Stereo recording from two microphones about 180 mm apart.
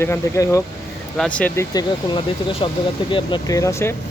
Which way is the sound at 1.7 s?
25° left (ahead or behind).